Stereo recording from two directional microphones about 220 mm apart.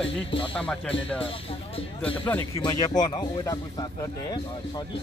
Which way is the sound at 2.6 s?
20° left (ahead or behind).